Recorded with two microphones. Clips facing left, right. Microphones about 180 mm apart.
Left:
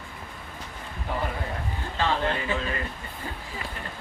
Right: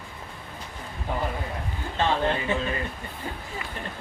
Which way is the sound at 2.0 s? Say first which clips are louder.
Right 2 dB; 25° right (ahead or behind).